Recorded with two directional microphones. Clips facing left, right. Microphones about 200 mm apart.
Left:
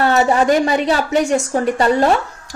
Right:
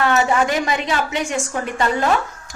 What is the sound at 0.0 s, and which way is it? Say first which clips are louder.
A woman's voice: left 3 dB; 35° left (ahead or behind).